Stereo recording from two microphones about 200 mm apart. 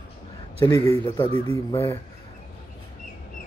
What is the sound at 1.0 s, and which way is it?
Speech, 20° left (ahead or behind).